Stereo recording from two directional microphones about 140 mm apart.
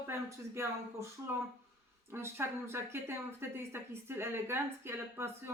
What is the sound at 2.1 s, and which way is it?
Speech, 15° right (ahead or behind).